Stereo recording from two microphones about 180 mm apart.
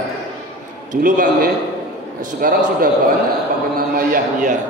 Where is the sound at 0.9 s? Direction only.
50° right (ahead or behind).